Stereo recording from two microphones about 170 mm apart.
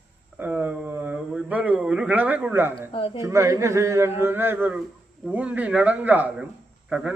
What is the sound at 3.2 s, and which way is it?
Speech, 15° right (ahead or behind).